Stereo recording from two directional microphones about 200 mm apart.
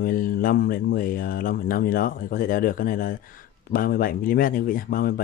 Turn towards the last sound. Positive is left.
turn(degrees=45)  # may be behind; listen again after turning